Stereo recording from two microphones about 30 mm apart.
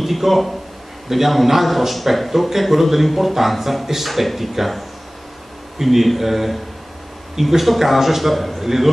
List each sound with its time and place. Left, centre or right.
0.0 s a man's voice: centre